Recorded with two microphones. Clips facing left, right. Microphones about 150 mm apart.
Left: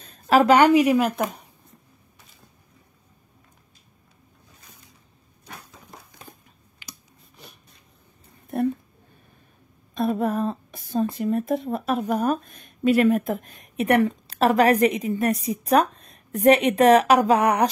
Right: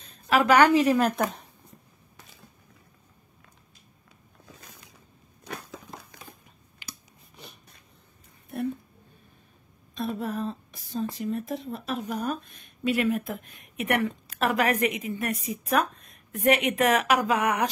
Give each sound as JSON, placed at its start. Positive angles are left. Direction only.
{"t": 0.3, "sound": "a woman's voice", "side_deg": 35}
{"t": 0.6, "sound": "a woman's voice", "side_deg": 15}
{"t": 9.9, "sound": "a sound", "side_deg": 50}
{"t": 11.1, "sound": "speech", "side_deg": 55}